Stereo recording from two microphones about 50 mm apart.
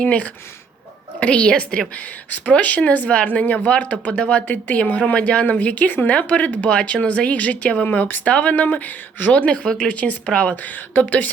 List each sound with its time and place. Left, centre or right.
0.0 s speech: left
9.3 s speech: left
10.6 s speech: left